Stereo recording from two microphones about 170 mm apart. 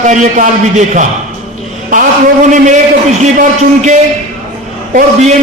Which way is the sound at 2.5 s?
45° right (ahead or behind).